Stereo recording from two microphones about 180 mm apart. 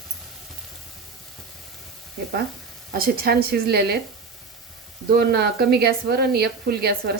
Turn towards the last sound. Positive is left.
turn(degrees=-60)  # may be behind; listen again after turning